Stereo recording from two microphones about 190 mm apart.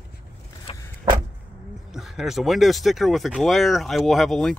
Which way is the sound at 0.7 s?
30° left (ahead or behind).